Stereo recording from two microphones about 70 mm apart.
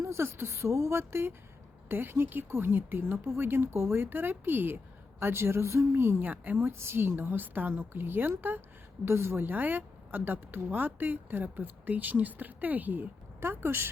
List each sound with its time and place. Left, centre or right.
0.0 s speech: right
6.2 s speech: right